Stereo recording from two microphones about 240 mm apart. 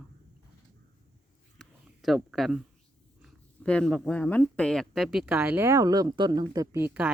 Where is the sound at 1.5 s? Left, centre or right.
Centre.